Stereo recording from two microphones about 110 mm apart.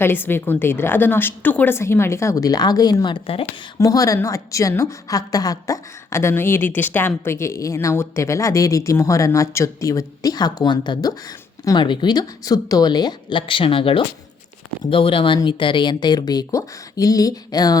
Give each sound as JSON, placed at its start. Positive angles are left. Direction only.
{"t": 0.0, "sound": "a woman's voice", "side_deg": 20}
{"t": 13.5, "sound": "speech", "side_deg": 55}